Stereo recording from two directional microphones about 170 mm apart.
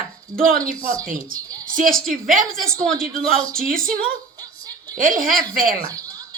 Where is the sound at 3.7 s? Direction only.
55° right (ahead or behind).